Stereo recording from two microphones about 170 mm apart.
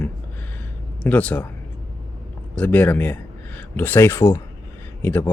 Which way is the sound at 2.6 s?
10° left (ahead or behind).